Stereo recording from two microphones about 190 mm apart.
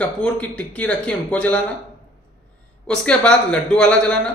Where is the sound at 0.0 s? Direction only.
5° left (ahead or behind).